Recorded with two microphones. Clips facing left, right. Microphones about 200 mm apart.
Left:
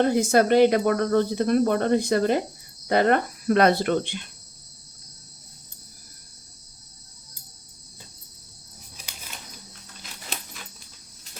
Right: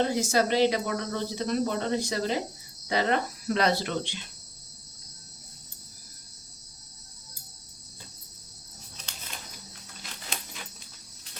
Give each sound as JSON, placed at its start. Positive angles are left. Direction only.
{"t": 0.0, "sound": "speech", "side_deg": 55}